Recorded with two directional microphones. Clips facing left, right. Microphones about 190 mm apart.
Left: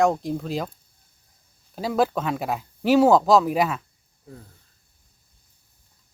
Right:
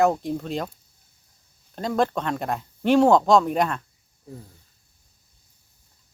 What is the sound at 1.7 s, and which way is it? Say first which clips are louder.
Speech: left 1 dB; 5° left (ahead or behind).